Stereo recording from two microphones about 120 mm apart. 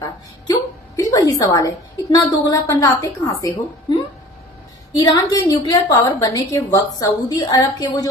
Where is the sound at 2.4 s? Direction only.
30° left (ahead or behind).